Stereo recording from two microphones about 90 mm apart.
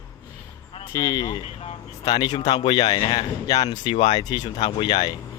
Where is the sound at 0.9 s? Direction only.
40° left (ahead or behind).